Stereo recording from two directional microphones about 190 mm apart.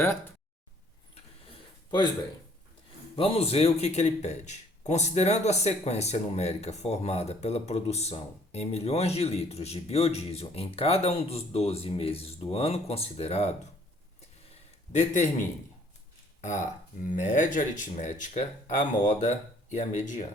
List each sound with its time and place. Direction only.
0.0 s speech: 10° left (ahead or behind)
3.2 s speech: 30° left (ahead or behind)
14.9 s speech: 40° left (ahead or behind)
17.0 s speech: 40° left (ahead or behind)